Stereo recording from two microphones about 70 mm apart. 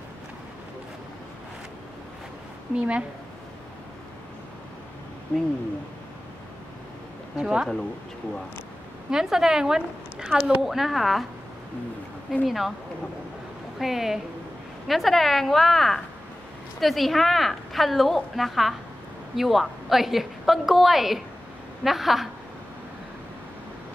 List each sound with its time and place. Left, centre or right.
2.7 s a woman's voice: centre
5.3 s speech: centre
7.3 s a woman's voice: centre
9.1 s a woman's voice: centre
12.4 s a woman's voice: centre
13.7 s a woman's voice: centre